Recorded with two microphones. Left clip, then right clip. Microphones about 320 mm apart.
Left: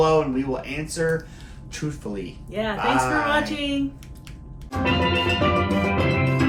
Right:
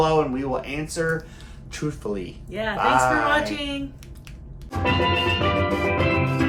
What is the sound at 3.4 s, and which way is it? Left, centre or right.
Speech, centre.